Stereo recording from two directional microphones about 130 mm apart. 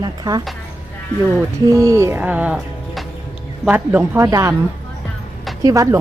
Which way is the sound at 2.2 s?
10° right (ahead or behind).